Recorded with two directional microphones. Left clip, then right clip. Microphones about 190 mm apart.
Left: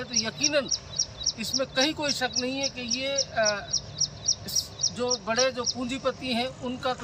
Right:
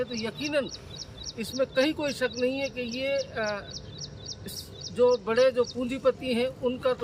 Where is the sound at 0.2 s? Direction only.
5° right (ahead or behind).